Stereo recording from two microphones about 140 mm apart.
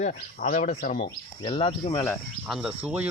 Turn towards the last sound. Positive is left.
turn(degrees=-10)  # may be behind; listen again after turning